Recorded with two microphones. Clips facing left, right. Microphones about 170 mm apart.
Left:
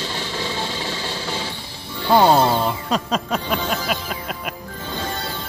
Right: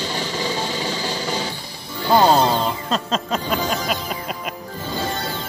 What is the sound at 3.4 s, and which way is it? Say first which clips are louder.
Music: right 1 dB; centre (ahead or behind).